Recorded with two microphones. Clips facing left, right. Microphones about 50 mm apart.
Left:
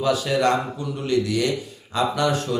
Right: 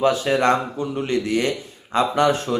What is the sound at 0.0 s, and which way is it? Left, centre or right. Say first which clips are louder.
Speech: right 2 dB; right.